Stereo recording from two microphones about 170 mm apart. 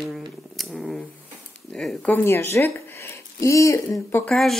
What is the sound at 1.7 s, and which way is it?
Speech, 5° left (ahead or behind).